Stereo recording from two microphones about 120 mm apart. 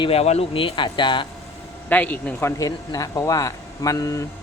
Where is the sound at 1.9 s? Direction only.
15° left (ahead or behind); by 4.3 s 30° left (ahead or behind).